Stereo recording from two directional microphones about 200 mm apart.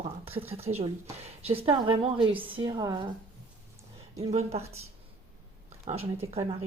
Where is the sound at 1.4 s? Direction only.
30° right (ahead or behind).